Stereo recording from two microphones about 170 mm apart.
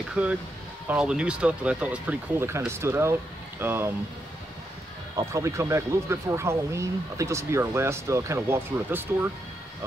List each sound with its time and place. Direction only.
0.1 s speech: 10° right (ahead or behind)
5.1 s speech: 20° right (ahead or behind)